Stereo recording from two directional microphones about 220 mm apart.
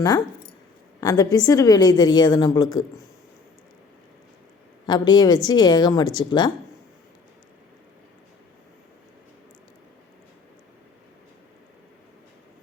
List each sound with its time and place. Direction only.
1.0 s a woman's voice: 15° left (ahead or behind)
4.9 s speech: 20° left (ahead or behind)